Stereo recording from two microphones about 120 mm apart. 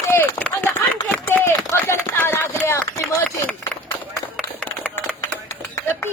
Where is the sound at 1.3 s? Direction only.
20° left (ahead or behind).